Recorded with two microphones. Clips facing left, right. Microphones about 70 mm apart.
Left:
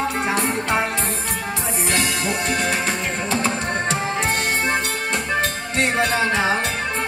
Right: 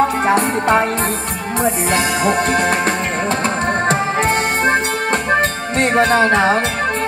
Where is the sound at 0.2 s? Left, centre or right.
Right.